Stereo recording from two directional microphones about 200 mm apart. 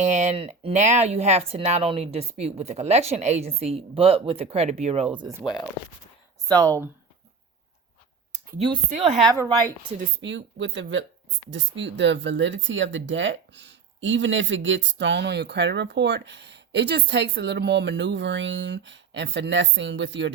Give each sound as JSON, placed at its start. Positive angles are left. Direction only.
{"t": 0.0, "sound": "speech", "side_deg": -35}
{"t": 6.5, "sound": "speech", "side_deg": -15}
{"t": 8.5, "sound": "speech", "side_deg": -25}
{"t": 10.2, "sound": "speech", "side_deg": -65}